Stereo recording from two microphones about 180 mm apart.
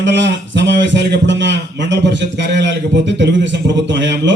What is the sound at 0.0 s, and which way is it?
A man's voice, 80° right.